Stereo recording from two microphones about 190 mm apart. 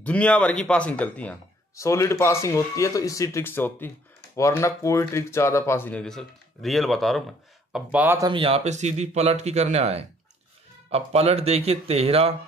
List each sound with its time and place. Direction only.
0.0 s a man's voice: 5° left (ahead or behind); by 8.3 s 10° right (ahead or behind)
8.3 s speech: 30° right (ahead or behind)